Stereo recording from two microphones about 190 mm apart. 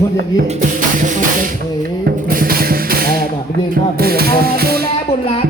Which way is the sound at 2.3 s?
50° right (ahead or behind).